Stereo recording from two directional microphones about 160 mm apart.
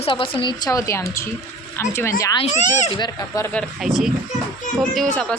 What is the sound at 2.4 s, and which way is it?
Speech, 45° left (ahead or behind).